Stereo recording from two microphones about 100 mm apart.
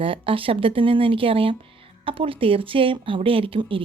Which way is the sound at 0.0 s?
60° right (ahead or behind).